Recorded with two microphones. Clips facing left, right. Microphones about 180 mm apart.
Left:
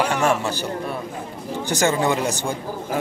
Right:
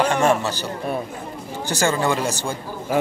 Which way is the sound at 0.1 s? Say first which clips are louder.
Right 2 dB; 10° left (ahead or behind).